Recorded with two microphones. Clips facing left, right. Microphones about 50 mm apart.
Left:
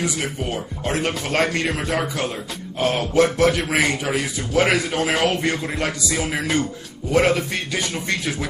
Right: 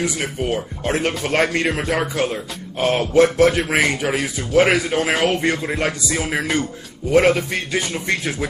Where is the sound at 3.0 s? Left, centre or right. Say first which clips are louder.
Right 4 dB; right.